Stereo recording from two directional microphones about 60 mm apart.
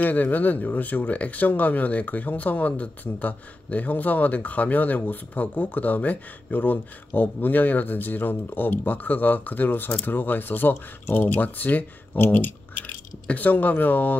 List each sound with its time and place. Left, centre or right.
0.0 s speech: left